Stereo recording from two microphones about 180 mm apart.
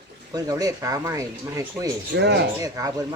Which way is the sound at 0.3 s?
20° right (ahead or behind).